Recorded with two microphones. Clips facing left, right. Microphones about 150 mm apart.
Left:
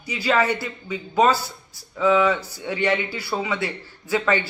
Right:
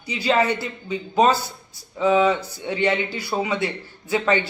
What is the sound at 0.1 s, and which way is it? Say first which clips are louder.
A man's voice: right 1 dB; 20° right (ahead or behind).